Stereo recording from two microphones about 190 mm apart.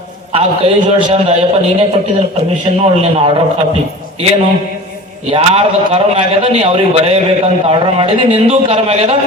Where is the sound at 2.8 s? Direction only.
30° right (ahead or behind).